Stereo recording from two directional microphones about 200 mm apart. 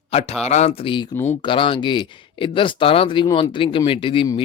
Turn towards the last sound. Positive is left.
turn(degrees=25)  # may be behind; listen again after turning